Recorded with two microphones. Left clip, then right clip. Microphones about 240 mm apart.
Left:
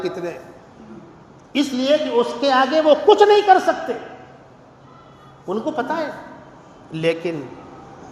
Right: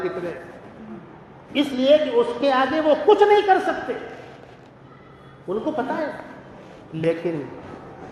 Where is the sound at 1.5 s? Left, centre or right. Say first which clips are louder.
Right 1 dB; left.